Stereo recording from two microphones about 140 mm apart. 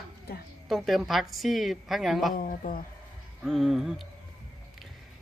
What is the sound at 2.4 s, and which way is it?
Speech, 85° left.